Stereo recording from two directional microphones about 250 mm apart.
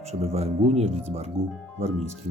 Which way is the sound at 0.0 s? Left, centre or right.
Right.